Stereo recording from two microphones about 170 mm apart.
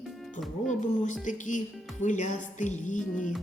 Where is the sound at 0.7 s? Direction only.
45° left (ahead or behind).